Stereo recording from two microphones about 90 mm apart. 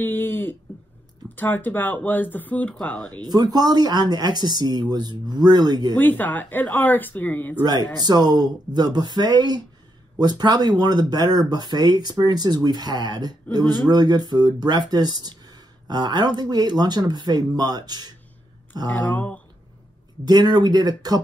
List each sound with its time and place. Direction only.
0.0 s a sound: 25° left (ahead or behind)
1.3 s speech: 20° left (ahead or behind)
2.7 s speech: 5° left (ahead or behind)
3.1 s speech: 50° right (ahead or behind)
5.9 s speech: 20° left (ahead or behind)
8.0 s speech: 50° right (ahead or behind)
18.9 s speech: 15° left (ahead or behind)
20.2 s speech: 50° right (ahead or behind)